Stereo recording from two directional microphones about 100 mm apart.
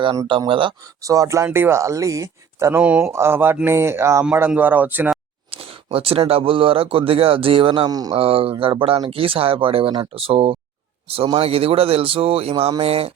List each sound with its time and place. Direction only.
0.3 s speech: 60° right (ahead or behind)
1.0 s speech: 35° right (ahead or behind)
1.5 s speech: 20° right (ahead or behind)
2.8 s speech: 15° right (ahead or behind)
3.1 s speech: 25° right (ahead or behind)
5.5 s speech: 75° right (ahead or behind)
7.9 s speech: 40° right (ahead or behind)
8.1 s a man's voice: 70° right (ahead or behind)